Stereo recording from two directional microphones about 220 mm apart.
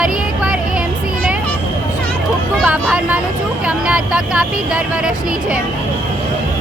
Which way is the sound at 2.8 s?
5° right (ahead or behind).